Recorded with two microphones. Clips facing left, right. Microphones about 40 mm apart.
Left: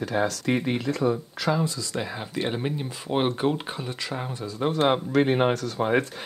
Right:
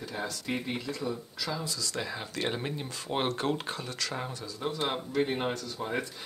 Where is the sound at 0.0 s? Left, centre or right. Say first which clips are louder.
Left 11 dB; left.